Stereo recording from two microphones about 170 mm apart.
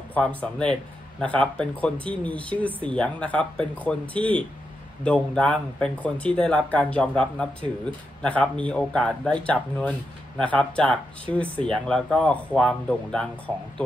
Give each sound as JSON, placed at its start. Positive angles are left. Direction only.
{"t": 0.1, "sound": "speech", "side_deg": 10}